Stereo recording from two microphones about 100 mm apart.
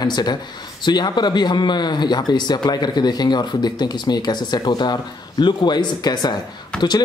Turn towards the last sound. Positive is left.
turn(degrees=10)  # may be behind; listen again after turning